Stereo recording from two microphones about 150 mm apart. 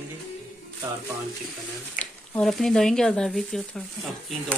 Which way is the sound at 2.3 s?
Centre (ahead or behind).